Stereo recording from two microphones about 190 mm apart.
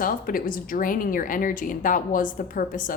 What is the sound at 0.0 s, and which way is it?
A woman's voice, 50° left (ahead or behind).